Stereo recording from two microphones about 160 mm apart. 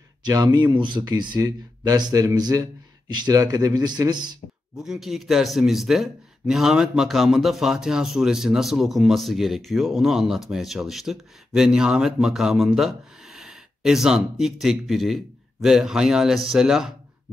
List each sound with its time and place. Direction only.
0.2 s speech: 25° right (ahead or behind)
4.7 s speech: 5° right (ahead or behind)